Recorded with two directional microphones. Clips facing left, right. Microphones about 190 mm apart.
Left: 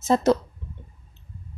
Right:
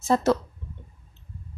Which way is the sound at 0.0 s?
20° left (ahead or behind).